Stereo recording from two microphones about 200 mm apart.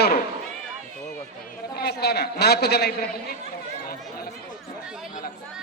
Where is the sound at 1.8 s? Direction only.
55° left (ahead or behind).